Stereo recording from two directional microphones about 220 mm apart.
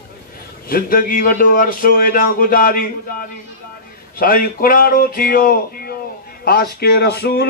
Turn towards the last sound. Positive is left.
turn(degrees=45)  # may be behind; listen again after turning